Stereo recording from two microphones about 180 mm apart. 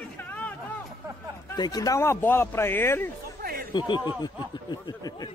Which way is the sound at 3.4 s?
55° right (ahead or behind).